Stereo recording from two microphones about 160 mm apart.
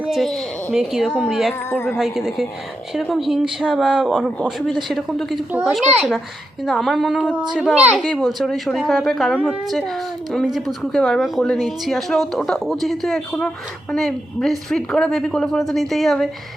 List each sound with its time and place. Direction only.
0.0 s a woman's voice: centre (ahead or behind)
8.0 s a woman's voice: 5° left (ahead or behind)